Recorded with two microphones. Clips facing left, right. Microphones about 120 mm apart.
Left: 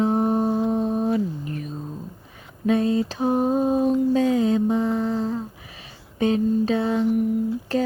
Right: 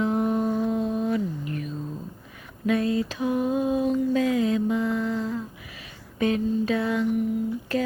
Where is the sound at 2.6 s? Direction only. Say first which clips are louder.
Left 3 dB; 30° left (ahead or behind).